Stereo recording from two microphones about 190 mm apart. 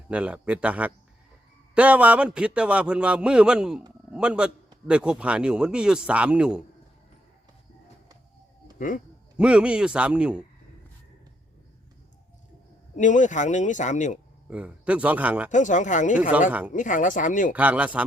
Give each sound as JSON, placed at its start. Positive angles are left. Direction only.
{"t": 0.1, "sound": "a man's voice", "side_deg": -5}
{"t": 9.4, "sound": "a man's voice", "side_deg": -5}
{"t": 13.0, "sound": "speech", "side_deg": 40}
{"t": 14.4, "sound": "speech", "side_deg": -5}
{"t": 15.4, "sound": "speech", "side_deg": 40}
{"t": 16.5, "sound": "speech", "side_deg": -10}
{"t": 16.7, "sound": "speech", "side_deg": 40}
{"t": 17.5, "sound": "speech", "side_deg": -10}